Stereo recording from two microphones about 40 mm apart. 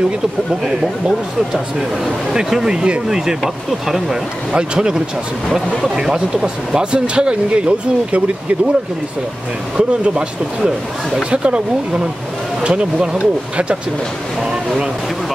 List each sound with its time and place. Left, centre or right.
0.7 s speech: centre
9.8 s speech: right
11.2 s speech: right